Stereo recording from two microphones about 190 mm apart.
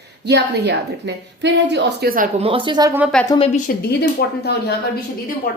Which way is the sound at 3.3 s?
30° left (ahead or behind).